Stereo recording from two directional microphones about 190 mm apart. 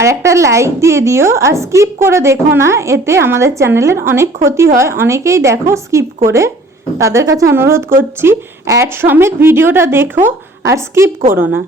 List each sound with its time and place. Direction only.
0.0 s a woman's voice: 15° right (ahead or behind)